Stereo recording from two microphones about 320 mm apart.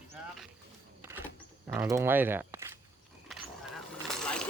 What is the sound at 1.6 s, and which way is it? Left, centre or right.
Speech, centre.